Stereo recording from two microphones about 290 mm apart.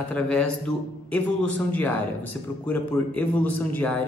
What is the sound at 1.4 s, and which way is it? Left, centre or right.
Speech, right.